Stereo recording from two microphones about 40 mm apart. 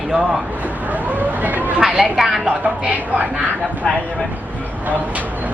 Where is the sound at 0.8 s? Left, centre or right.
Right.